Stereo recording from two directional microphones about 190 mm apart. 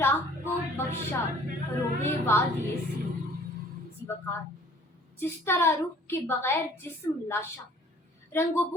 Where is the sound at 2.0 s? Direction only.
10° left (ahead or behind).